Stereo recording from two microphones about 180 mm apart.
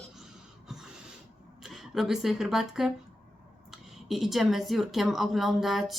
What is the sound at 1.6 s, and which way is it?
A woman's voice, centre (ahead or behind).